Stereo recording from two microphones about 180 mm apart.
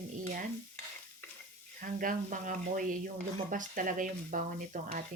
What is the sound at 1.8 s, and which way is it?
Speech, 50° right (ahead or behind).